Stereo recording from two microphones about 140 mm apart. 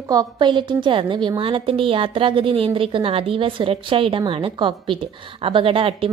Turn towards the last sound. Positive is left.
turn(degrees=-40)  # may be behind; listen again after turning